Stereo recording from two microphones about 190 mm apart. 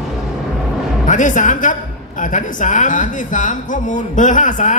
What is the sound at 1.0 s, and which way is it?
A woman's voice, 40° left (ahead or behind).